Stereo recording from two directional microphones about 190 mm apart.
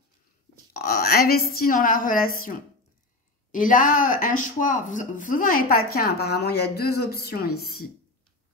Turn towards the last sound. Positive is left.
turn(degrees=55)  # may be behind; listen again after turning